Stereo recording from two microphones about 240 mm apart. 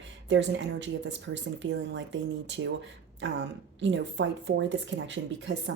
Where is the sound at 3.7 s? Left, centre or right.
Right.